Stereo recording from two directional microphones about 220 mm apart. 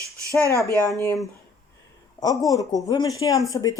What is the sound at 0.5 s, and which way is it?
Speech, 15° left (ahead or behind).